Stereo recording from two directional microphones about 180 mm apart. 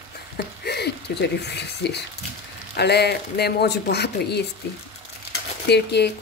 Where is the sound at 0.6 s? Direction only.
65° left (ahead or behind).